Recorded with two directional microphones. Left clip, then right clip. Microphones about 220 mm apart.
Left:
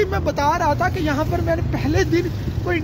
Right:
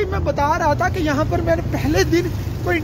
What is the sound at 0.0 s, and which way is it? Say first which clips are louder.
Speech: even; 55° left (ahead or behind).